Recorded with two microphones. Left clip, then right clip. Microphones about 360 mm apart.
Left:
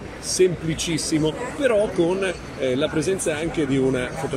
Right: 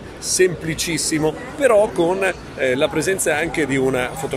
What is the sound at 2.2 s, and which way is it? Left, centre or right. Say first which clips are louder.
Speech: right 5 dB; right.